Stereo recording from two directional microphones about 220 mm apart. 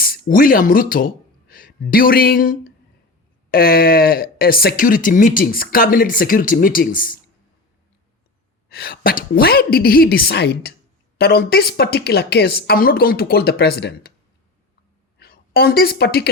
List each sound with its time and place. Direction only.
0.0 s speech: 40° left (ahead or behind)
8.7 s a woman's voice: 45° left (ahead or behind)
15.2 s a woman's voice: 45° left (ahead or behind)